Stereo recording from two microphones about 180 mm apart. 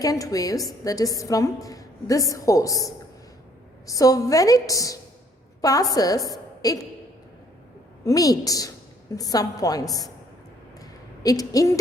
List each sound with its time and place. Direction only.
0.0 s a woman's voice: 20° left (ahead or behind)
8.0 s a woman's voice: 20° left (ahead or behind)
10.8 s a sound: 20° left (ahead or behind)